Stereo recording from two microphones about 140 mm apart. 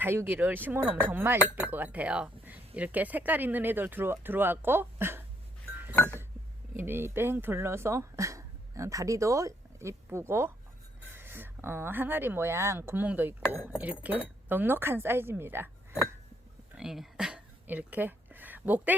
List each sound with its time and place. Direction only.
0.0 s speech: 15° right (ahead or behind)
6.7 s speech: 15° right (ahead or behind)
16.7 s a sound: 5° right (ahead or behind)